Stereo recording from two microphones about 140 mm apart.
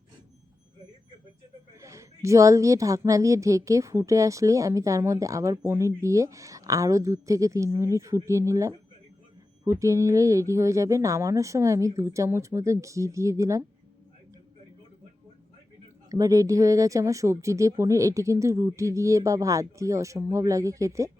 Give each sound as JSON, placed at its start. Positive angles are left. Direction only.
{"t": 1.8, "sound": "a woman's voice", "side_deg": -20}
{"t": 16.0, "sound": "a woman's voice", "side_deg": -25}